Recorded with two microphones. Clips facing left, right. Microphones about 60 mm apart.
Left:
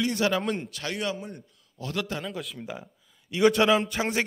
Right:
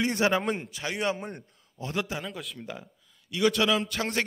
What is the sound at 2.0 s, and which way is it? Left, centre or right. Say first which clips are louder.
Speech: left 1 dB; centre.